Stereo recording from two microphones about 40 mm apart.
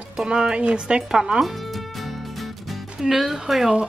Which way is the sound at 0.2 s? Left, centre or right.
Right.